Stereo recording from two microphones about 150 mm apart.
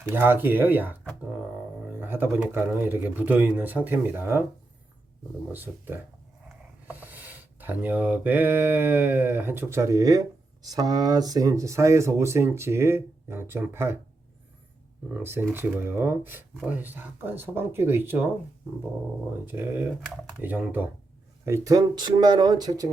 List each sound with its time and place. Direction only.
0.1 s mantra: 15° right (ahead or behind)
5.5 s mantra: 10° right (ahead or behind)
15.1 s mantra: 15° right (ahead or behind)
19.5 s mantra: 15° right (ahead or behind)
21.4 s speech: 20° right (ahead or behind)